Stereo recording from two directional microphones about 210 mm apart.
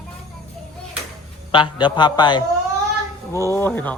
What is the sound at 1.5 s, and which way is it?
A man's voice, 20° left (ahead or behind).